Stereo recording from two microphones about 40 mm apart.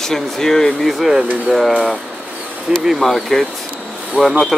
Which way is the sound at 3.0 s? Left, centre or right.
Centre.